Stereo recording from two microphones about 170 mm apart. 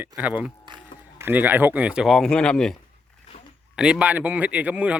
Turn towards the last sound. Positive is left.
turn(degrees=-10)  # may be behind; listen again after turning